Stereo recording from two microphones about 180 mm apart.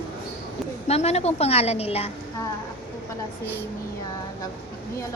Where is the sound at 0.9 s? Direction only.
35° left (ahead or behind).